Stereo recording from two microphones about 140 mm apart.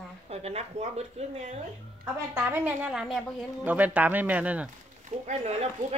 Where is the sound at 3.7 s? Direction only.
10° right (ahead or behind).